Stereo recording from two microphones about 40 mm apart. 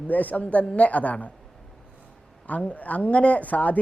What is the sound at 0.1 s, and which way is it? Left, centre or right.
Speech, left.